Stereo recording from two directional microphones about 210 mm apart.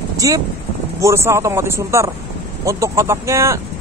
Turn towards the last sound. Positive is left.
turn(degrees=-15)  # may be behind; listen again after turning